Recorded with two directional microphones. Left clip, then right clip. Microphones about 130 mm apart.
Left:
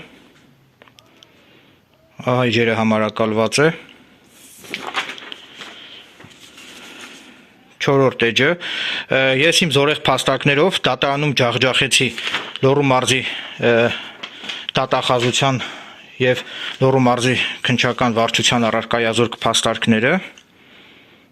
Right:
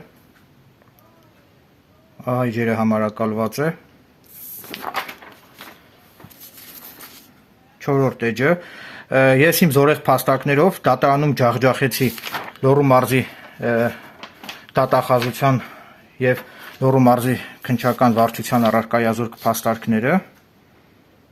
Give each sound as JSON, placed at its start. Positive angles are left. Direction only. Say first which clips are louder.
{"t": 2.1, "sound": "speech", "louder": "left 5 dB", "side_deg": 30}
{"t": 4.7, "sound": "a sound", "louder": "left 2 dB", "side_deg": 0}
{"t": 8.1, "sound": "speech", "louder": "left 3 dB", "side_deg": 30}
{"t": 18.5, "sound": "speech", "louder": "even", "side_deg": 30}